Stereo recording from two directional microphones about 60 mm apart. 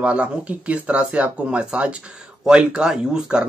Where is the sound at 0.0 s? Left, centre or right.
Centre.